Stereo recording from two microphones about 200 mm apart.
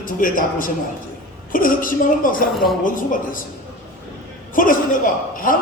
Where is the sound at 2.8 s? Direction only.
40° left (ahead or behind).